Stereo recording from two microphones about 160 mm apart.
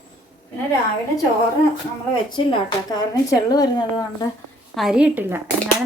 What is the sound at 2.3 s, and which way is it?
Speech, 25° left (ahead or behind).